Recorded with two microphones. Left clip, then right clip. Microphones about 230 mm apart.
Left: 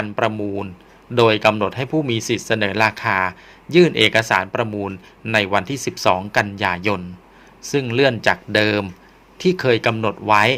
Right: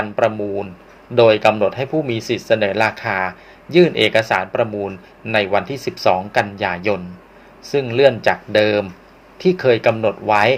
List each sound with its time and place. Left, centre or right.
0.0 s speech: left